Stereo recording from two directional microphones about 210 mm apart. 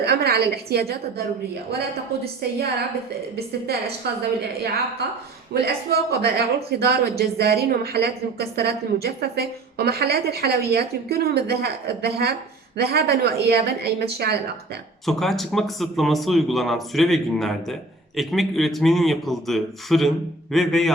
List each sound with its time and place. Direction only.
0.0 s a woman's voice: 50° right (ahead or behind)
3.3 s speech: 50° right (ahead or behind)
5.5 s speech: 50° right (ahead or behind)
15.0 s a man's voice: centre (ahead or behind)